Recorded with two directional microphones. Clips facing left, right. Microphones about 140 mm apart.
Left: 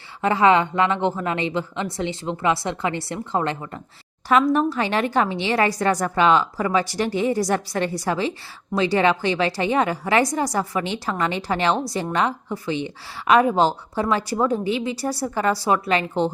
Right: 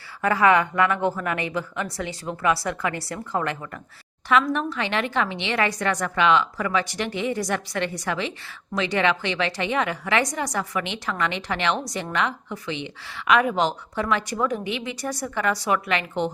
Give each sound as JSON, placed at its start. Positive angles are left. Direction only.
{"t": 0.2, "sound": "a woman's voice", "side_deg": 25}
{"t": 4.3, "sound": "a woman's voice", "side_deg": 35}